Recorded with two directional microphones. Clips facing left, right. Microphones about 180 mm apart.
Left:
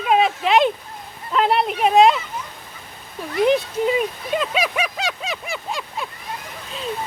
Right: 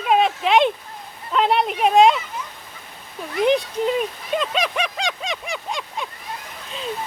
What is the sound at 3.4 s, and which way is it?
Speech, 5° left (ahead or behind).